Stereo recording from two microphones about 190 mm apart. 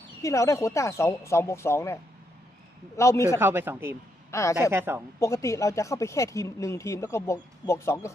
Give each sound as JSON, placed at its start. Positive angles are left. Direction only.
{"t": 0.2, "sound": "speech", "side_deg": 15}
{"t": 3.3, "sound": "speech", "side_deg": -10}
{"t": 4.3, "sound": "a woman's voice", "side_deg": 15}
{"t": 4.7, "sound": "speech", "side_deg": -10}
{"t": 5.2, "sound": "speech", "side_deg": 15}